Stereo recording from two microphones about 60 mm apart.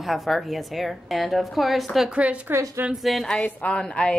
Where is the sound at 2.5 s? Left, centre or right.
Right.